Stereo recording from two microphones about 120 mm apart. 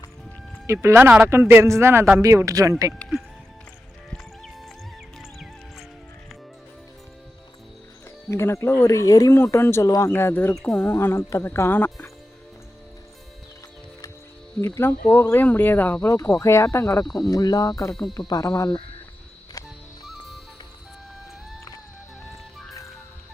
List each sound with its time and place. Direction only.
0.7 s a man's voice: 20° right (ahead or behind)
4.1 s music: centre (ahead or behind)
8.3 s speech: 20° left (ahead or behind)
10.5 s speech: 5° left (ahead or behind)
10.8 s speech: 20° left (ahead or behind)
14.5 s speech: 5° left (ahead or behind)
14.8 s speech: 15° left (ahead or behind)
16.4 s speech: 25° left (ahead or behind)
20.1 s music: centre (ahead or behind)